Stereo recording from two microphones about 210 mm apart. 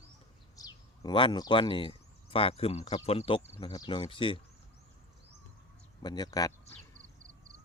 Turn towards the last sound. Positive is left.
turn(degrees=15)  # may be behind; listen again after turning